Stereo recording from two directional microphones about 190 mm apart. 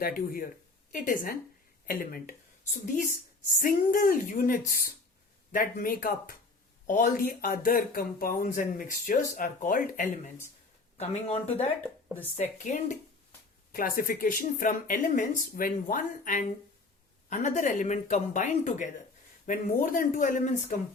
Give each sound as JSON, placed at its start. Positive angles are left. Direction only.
{"t": 0.0, "sound": "speech", "side_deg": 50}
{"t": 3.6, "sound": "speech", "side_deg": 45}
{"t": 10.9, "sound": "speech", "side_deg": 35}